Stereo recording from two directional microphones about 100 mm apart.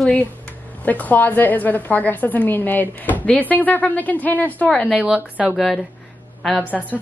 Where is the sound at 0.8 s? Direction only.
15° left (ahead or behind).